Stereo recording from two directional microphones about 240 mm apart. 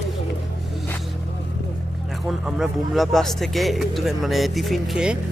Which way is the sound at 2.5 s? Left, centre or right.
Centre.